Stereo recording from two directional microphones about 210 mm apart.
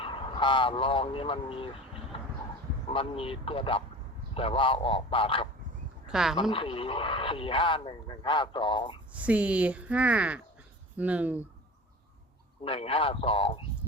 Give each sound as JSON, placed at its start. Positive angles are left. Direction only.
{"t": 0.0, "sound": "speech", "side_deg": 25}
{"t": 2.9, "sound": "speech", "side_deg": 25}
{"t": 6.1, "sound": "speech", "side_deg": -5}
{"t": 6.5, "sound": "speech", "side_deg": 25}
{"t": 9.1, "sound": "speech", "side_deg": -5}
{"t": 12.6, "sound": "speech", "side_deg": 25}